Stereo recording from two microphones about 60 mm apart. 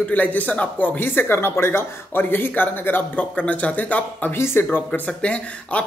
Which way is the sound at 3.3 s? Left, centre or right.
Left.